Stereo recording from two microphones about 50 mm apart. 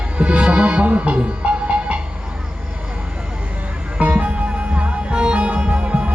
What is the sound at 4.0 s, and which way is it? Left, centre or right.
Music, right.